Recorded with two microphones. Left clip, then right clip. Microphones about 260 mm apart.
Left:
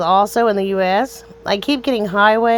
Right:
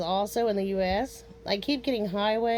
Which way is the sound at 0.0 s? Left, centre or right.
Left.